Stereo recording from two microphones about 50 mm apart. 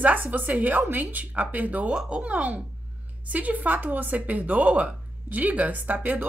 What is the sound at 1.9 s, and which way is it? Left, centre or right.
Speech, centre.